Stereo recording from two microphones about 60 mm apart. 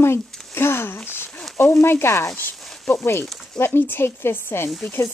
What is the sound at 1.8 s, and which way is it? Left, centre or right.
Stir, left.